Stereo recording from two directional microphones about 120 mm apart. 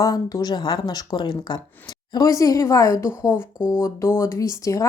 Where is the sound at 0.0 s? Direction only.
30° left (ahead or behind).